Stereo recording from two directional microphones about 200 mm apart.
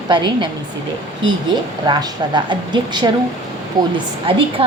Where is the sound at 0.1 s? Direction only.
25° right (ahead or behind).